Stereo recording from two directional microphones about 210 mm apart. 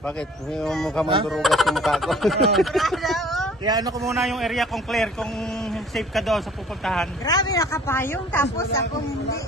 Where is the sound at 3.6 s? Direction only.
20° right (ahead or behind).